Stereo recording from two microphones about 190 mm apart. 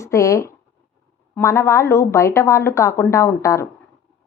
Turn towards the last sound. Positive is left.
turn(degrees=15)  # may be behind; listen again after turning